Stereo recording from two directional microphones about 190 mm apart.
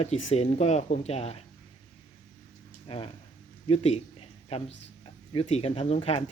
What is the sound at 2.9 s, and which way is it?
Speech, 30° left (ahead or behind).